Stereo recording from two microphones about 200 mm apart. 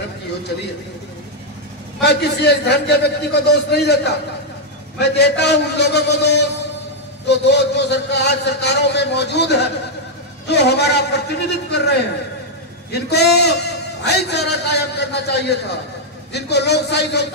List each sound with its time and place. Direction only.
2.0 s a man's voice: 55° left (ahead or behind)